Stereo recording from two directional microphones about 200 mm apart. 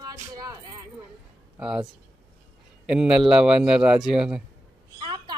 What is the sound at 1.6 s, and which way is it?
Speech, 5° right (ahead or behind).